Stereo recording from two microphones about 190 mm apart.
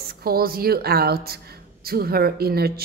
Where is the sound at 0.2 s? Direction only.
50° right (ahead or behind).